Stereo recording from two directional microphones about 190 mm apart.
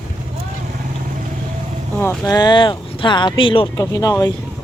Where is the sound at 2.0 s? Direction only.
15° left (ahead or behind).